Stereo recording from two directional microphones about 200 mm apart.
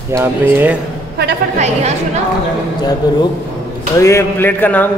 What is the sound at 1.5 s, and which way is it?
Speech, 35° right (ahead or behind).